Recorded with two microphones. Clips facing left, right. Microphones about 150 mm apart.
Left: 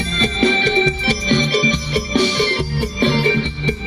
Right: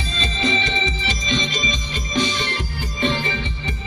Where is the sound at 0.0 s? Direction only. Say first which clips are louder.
Left 7 dB; 60° left (ahead or behind).